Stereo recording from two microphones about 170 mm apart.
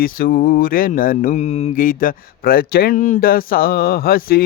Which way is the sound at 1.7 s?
55° left (ahead or behind).